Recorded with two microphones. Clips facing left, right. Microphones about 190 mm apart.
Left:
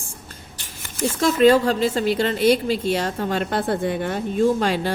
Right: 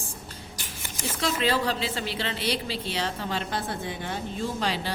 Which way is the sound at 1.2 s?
45° left (ahead or behind).